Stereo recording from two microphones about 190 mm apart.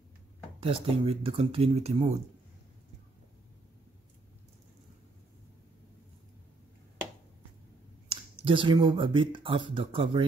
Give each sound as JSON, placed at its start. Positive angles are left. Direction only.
{"t": 0.6, "sound": "speech", "side_deg": -30}
{"t": 8.1, "sound": "speech", "side_deg": -25}